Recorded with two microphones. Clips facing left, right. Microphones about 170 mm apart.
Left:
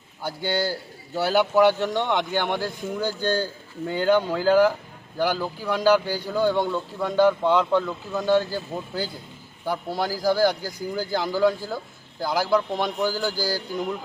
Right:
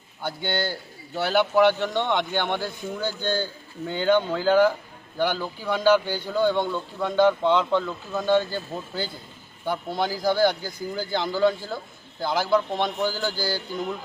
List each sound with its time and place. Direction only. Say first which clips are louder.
0.2 s a man's voice: left 2 dB; 10° left (ahead or behind)
3.2 s a man's voice: left 2 dB; 35° left (ahead or behind)
3.8 s a man's voice: left 1 dB; 5° left (ahead or behind)